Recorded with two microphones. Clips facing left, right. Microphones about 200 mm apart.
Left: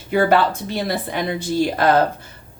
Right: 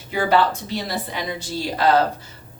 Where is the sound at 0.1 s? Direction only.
55° left (ahead or behind).